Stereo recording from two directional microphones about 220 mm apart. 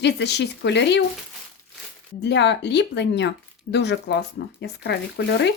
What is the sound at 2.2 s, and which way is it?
Speech, 50° left (ahead or behind).